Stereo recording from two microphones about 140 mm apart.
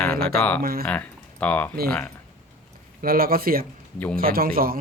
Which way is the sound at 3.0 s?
90° right.